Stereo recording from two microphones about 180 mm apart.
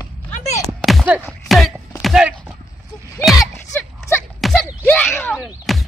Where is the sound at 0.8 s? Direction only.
Centre (ahead or behind).